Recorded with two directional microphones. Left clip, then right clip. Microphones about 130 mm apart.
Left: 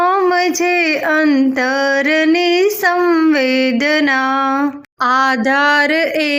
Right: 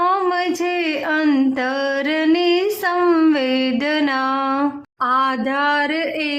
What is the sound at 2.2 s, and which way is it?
Female singing, 30° left (ahead or behind).